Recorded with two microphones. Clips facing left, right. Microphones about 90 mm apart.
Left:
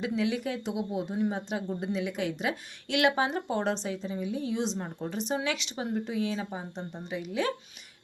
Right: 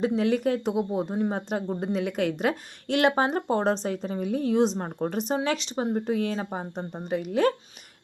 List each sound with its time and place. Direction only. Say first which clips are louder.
0.0 s speech: right 6 dB; 45° right (ahead or behind)